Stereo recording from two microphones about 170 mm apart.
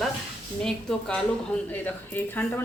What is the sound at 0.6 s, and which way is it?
Speech, 5° left (ahead or behind).